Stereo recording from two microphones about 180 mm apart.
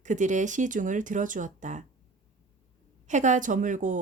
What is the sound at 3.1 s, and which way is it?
Speech, 40° right (ahead or behind).